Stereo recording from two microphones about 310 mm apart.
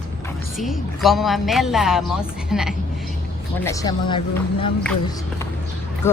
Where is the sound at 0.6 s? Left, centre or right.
Centre.